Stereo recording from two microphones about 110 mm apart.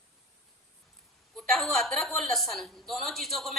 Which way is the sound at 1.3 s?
Centre (ahead or behind).